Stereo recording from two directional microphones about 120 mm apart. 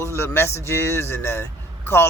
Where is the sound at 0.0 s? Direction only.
25° left (ahead or behind).